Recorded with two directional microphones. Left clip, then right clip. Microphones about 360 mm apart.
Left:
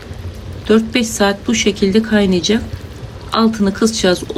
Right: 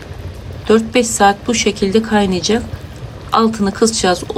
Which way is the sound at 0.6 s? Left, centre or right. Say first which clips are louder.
Right 2 dB; centre.